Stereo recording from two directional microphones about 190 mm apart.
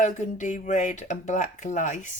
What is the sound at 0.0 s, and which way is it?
A woman's voice, 40° left (ahead or behind).